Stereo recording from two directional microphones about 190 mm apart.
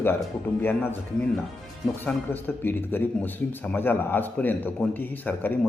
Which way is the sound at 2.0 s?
10° left (ahead or behind).